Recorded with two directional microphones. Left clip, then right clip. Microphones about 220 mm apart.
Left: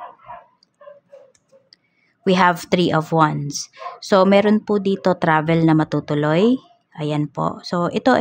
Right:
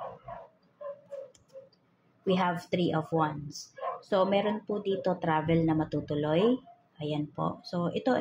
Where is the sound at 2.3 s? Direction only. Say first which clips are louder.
Left 13 dB; 45° left (ahead or behind).